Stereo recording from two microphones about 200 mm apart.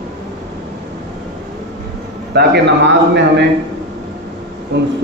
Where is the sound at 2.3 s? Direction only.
55° right (ahead or behind).